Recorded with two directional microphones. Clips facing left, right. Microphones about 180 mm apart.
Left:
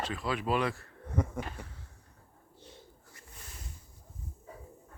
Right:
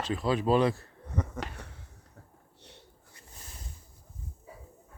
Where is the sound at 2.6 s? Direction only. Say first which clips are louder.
Left 3 dB; 70° right (ahead or behind).